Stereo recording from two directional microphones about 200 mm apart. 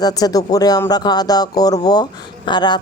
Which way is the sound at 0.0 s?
20° left (ahead or behind).